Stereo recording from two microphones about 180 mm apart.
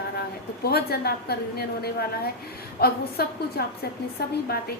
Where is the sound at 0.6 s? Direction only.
60° left (ahead or behind).